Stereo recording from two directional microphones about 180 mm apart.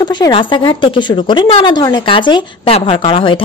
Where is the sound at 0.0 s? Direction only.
25° left (ahead or behind).